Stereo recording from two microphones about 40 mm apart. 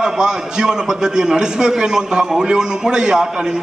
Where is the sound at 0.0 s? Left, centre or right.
Centre.